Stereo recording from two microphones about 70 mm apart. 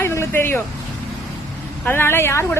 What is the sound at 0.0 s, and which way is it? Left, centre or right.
Music, left.